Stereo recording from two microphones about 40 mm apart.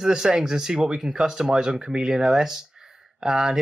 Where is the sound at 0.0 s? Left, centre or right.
Centre.